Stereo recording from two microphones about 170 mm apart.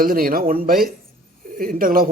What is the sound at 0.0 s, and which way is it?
A man's voice, 60° right (ahead or behind).